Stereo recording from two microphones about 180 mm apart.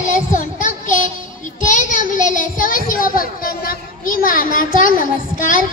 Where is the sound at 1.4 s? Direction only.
45° left (ahead or behind).